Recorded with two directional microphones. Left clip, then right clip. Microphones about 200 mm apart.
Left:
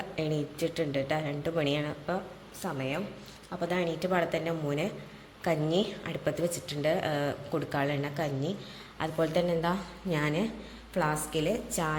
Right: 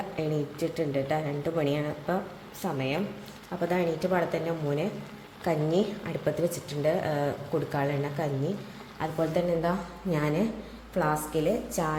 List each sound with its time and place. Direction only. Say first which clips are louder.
0.2 s a woman's voice: right 1 dB; centre (ahead or behind)
2.7 s a woman's voice: right 4 dB; 15° right (ahead or behind); by 11.9 s centre (ahead or behind)